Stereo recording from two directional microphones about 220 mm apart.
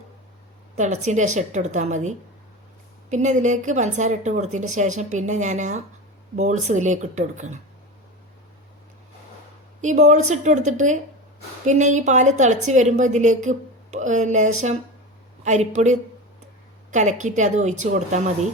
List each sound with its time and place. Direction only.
0.8 s a woman's voice: 30° right (ahead or behind)
9.8 s a woman's voice: 35° right (ahead or behind)